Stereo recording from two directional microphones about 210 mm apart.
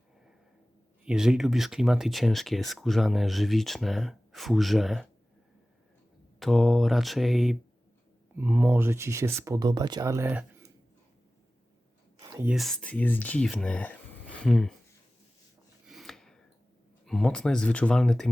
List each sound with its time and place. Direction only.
1.0 s speech: 5° right (ahead or behind)
6.4 s speech: centre (ahead or behind)
12.2 s whispering: 15° right (ahead or behind)
12.5 s speech: centre (ahead or behind)
15.9 s a sound: centre (ahead or behind)
17.1 s speech: 5° left (ahead or behind)